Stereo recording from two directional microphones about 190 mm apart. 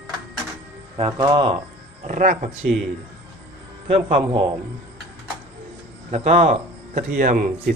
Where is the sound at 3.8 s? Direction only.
30° right (ahead or behind).